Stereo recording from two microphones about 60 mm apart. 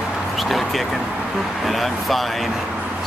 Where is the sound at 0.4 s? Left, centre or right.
Centre.